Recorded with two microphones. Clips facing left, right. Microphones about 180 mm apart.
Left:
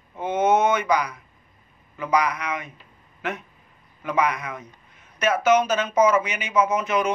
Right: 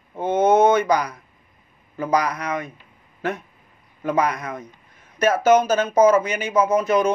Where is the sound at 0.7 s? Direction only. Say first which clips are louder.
Right 4 dB; 35° right (ahead or behind).